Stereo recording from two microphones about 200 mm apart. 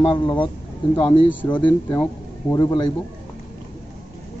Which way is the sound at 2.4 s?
20° left (ahead or behind).